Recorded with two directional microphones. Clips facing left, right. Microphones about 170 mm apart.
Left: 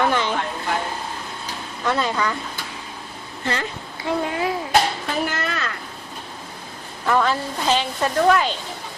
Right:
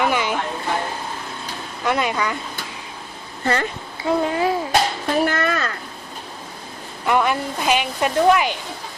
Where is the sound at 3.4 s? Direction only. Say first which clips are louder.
Right 4 dB; 50° right (ahead or behind).